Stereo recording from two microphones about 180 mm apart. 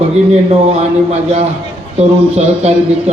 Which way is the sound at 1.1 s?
35° right (ahead or behind).